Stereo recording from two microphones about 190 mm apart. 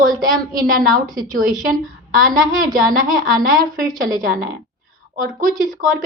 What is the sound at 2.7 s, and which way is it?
A woman's voice, 45° right (ahead or behind).